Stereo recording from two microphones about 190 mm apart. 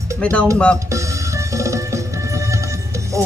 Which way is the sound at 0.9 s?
15° right (ahead or behind).